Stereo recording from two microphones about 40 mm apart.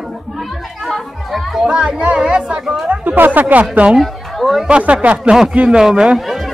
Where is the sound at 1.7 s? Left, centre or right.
Right.